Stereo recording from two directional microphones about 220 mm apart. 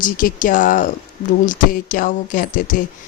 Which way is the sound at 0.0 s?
40° left (ahead or behind).